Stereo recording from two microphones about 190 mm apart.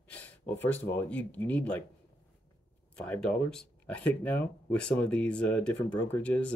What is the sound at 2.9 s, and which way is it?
Speech, 5° left (ahead or behind).